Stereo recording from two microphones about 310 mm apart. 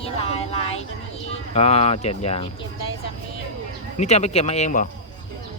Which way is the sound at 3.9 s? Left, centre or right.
Left.